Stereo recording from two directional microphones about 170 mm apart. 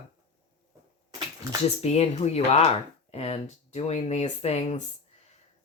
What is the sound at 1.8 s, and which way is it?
Speech, 40° left (ahead or behind).